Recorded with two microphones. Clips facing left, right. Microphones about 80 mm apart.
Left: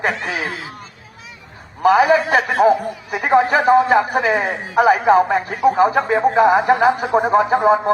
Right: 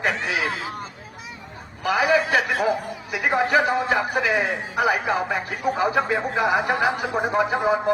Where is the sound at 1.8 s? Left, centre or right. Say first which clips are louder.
Left 7 dB; left.